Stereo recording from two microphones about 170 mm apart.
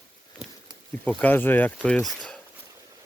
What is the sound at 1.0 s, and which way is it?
Speech, 10° left (ahead or behind).